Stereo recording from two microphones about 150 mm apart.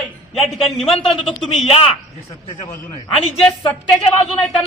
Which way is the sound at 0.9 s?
40° left (ahead or behind).